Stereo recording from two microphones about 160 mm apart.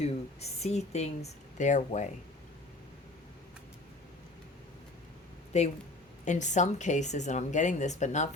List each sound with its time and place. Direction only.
0.0 s speech: 40° left (ahead or behind)
5.5 s speech: 45° left (ahead or behind)